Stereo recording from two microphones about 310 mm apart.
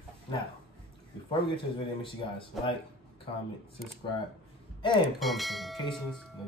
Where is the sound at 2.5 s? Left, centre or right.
Centre.